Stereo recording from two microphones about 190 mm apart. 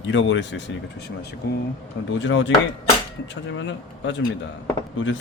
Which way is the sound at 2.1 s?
75° left (ahead or behind).